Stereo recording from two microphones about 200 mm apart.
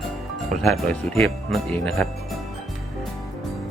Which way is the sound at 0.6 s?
Centre (ahead or behind).